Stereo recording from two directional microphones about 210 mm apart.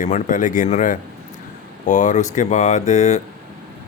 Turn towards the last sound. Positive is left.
turn(degrees=30)  # may be behind; listen again after turning